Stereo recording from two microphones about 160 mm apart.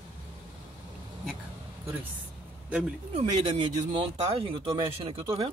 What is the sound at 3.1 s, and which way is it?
Speech, 40° right (ahead or behind).